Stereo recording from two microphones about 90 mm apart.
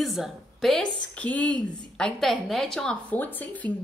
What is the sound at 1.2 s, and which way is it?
A woman's voice, 15° left (ahead or behind).